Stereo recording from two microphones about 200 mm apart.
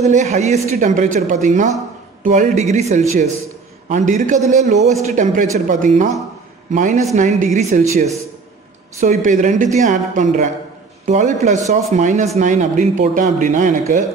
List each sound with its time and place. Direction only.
0.0 s speech: 35° right (ahead or behind)